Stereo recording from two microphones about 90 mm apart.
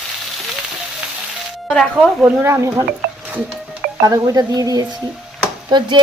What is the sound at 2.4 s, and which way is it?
Speech, 30° right (ahead or behind).